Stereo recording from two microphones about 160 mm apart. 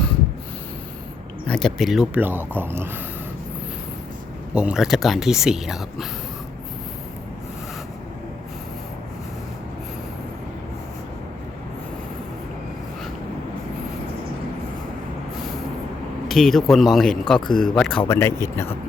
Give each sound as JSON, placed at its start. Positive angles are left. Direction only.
{"t": 1.5, "sound": "speech", "side_deg": 5}
{"t": 4.5, "sound": "speech", "side_deg": -5}
{"t": 16.3, "sound": "speech", "side_deg": 0}
{"t": 18.1, "sound": "speech", "side_deg": 15}